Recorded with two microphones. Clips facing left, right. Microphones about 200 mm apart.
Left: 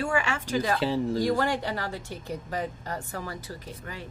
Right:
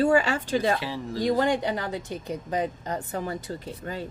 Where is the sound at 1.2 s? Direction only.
20° right (ahead or behind).